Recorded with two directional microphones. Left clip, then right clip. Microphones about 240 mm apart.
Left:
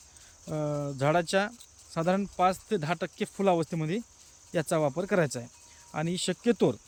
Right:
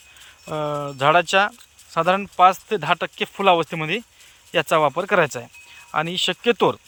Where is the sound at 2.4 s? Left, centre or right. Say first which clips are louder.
Right 11 dB; centre.